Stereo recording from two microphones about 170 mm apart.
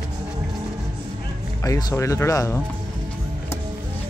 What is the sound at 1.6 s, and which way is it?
Speech, 20° left (ahead or behind).